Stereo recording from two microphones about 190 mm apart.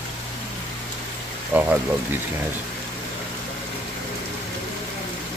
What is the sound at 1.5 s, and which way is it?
Speech, 10° right (ahead or behind).